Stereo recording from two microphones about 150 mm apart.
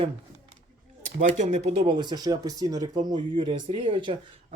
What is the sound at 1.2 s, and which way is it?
Speech, 55° right (ahead or behind).